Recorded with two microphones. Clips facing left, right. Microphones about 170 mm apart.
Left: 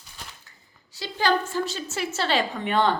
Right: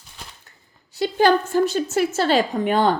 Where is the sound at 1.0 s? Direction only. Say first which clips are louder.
Right 7 dB; 50° right (ahead or behind).